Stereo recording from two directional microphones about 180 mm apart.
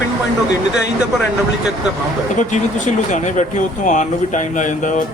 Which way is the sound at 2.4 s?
40° left (ahead or behind).